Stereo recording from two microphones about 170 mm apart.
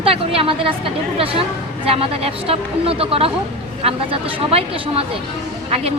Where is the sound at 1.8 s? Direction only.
35° right (ahead or behind).